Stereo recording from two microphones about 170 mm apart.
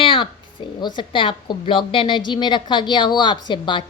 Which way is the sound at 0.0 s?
30° left (ahead or behind).